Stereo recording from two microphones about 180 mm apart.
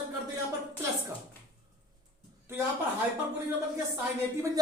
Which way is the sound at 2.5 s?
15° right (ahead or behind).